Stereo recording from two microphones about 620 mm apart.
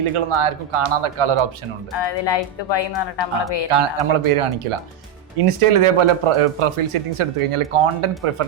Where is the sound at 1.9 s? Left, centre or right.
Left.